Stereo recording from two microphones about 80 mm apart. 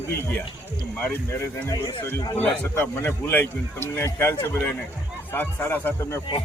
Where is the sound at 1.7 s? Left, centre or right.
Left.